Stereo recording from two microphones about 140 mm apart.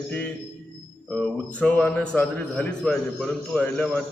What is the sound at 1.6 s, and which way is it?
A man's voice, 10° left (ahead or behind).